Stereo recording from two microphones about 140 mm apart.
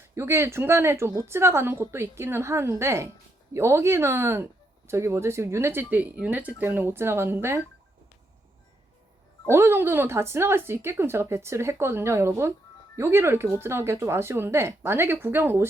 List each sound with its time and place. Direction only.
0.1 s a woman's voice: 20° right (ahead or behind)
9.5 s speech: 15° right (ahead or behind)